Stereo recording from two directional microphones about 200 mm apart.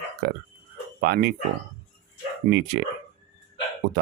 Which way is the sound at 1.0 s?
50° right (ahead or behind).